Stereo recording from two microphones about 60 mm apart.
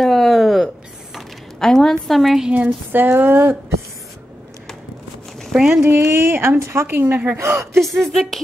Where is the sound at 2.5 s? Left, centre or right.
Right.